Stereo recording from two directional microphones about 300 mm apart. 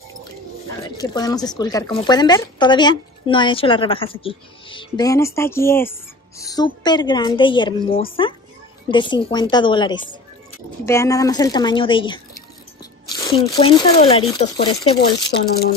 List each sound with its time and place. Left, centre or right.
0.8 s speech: centre
15.0 s speech: left